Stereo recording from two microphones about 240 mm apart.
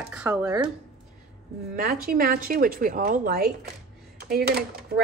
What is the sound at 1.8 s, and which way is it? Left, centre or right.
Speech, right.